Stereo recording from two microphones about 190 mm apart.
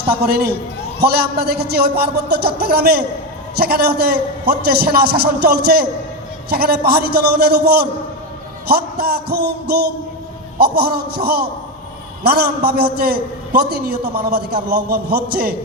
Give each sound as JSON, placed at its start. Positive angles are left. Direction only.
{"t": 0.3, "sound": "a man's voice", "side_deg": -55}